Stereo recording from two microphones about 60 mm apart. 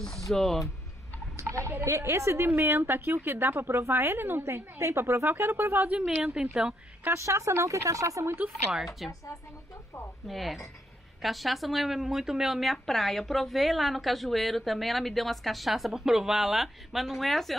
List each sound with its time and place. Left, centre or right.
0.3 s a woman's voice: centre
1.3 s a woman's voice: right
2.8 s a woman's voice: right
5.3 s speech: right
5.8 s a woman's voice: right
7.1 s speech: right
9.0 s a woman's voice: centre
10.2 s a woman's voice: centre